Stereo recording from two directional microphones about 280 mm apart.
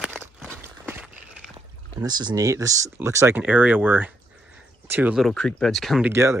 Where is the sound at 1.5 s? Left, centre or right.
Centre.